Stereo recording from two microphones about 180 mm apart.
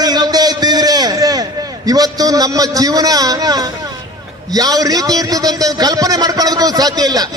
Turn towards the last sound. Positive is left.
turn(degrees=-20)  # may be behind; listen again after turning